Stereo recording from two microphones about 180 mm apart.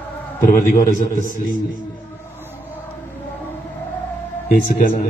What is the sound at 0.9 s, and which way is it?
Speech, 45° left (ahead or behind).